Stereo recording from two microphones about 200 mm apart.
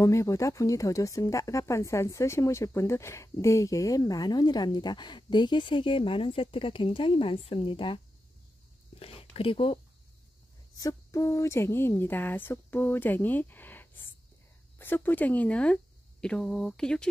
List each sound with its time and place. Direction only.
0.0 s speech: 15° left (ahead or behind)
9.0 s speech: 30° left (ahead or behind)
10.8 s speech: 15° left (ahead or behind)